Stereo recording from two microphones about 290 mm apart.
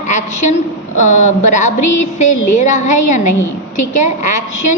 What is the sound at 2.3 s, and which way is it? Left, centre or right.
Speech, left.